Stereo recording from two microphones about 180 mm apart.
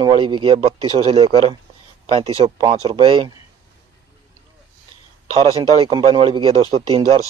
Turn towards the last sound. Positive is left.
turn(degrees=-25)  # may be behind; listen again after turning